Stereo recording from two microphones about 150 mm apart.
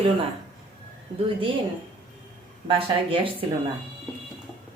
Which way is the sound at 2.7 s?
35° right (ahead or behind).